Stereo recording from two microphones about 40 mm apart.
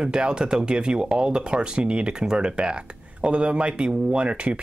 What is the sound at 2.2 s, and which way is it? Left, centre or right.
Speech, centre.